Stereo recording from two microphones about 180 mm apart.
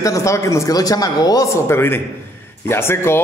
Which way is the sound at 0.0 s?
15° left (ahead or behind).